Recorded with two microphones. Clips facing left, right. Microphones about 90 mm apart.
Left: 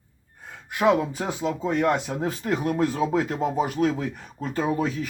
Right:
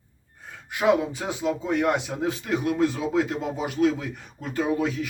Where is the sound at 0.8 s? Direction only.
45° left (ahead or behind).